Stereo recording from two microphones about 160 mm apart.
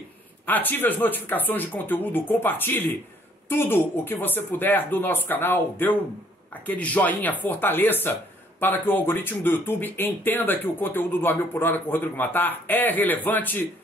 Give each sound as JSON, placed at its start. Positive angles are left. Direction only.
{"t": 0.5, "sound": "speech", "side_deg": 10}